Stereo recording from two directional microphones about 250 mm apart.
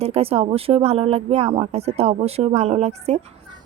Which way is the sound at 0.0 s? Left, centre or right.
Right.